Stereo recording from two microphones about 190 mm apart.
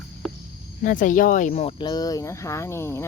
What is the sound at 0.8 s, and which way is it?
Speech, 45° left (ahead or behind).